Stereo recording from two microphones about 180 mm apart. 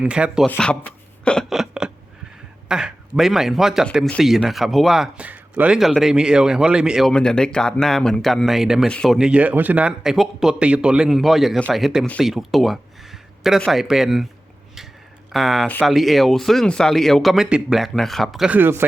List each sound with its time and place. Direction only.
0.0 s a man's voice: 5° right (ahead or behind)
0.4 s speech: 5° left (ahead or behind)
1.2 s a sound: 5° left (ahead or behind)
2.6 s a man's voice: 5° right (ahead or behind)
15.3 s a man's voice: centre (ahead or behind)